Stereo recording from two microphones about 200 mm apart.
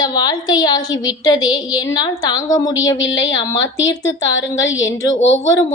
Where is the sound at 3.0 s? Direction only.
70° left (ahead or behind).